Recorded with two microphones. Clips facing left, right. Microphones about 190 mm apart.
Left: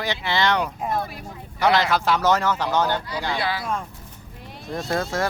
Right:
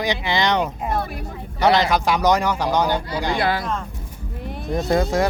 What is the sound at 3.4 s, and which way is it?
Speech, 50° right (ahead or behind).